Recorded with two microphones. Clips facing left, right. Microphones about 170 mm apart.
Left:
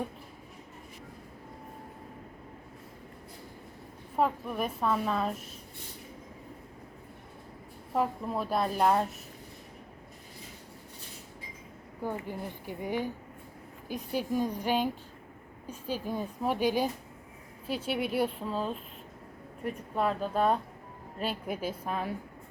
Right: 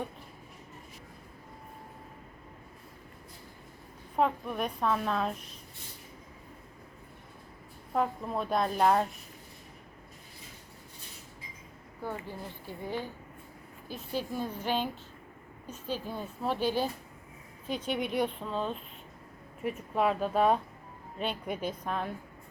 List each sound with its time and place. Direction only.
4.2 s a woman's voice: centre (ahead or behind)
7.9 s a woman's voice: 5° left (ahead or behind)
12.0 s a woman's voice: 15° left (ahead or behind)